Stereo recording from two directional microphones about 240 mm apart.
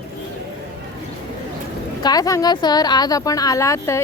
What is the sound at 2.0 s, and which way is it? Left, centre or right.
A woman's voice, centre.